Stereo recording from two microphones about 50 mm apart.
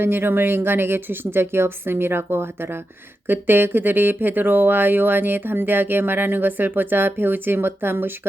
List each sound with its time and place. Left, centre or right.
0.0 s speech: right